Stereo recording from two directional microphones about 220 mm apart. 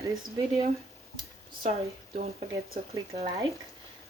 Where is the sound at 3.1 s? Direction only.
15° right (ahead or behind).